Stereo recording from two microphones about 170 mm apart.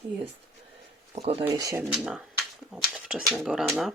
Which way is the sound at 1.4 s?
20° right (ahead or behind).